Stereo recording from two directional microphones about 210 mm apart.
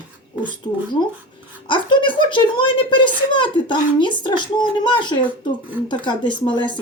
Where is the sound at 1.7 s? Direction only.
25° left (ahead or behind).